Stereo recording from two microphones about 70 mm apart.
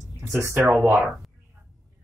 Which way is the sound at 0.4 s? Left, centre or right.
Right.